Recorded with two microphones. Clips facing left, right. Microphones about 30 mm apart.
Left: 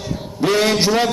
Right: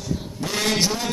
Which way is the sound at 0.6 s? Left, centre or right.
Left.